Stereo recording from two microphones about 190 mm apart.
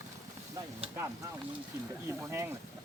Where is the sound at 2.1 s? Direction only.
15° right (ahead or behind).